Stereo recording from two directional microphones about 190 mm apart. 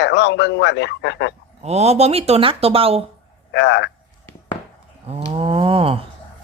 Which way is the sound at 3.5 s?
65° left (ahead or behind).